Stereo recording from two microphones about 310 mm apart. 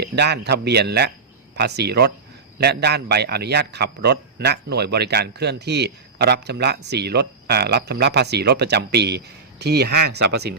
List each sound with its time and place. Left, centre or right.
0.0 s a man's voice: right